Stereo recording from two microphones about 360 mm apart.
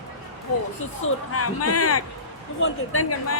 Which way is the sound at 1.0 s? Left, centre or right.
Left.